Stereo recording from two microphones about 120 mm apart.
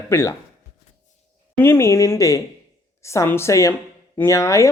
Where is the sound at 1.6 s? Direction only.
20° left (ahead or behind).